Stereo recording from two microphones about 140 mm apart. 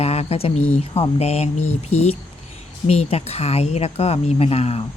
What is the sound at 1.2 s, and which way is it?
Speech, 50° left (ahead or behind).